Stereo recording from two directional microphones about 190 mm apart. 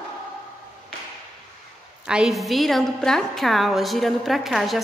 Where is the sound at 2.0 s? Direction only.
5° right (ahead or behind).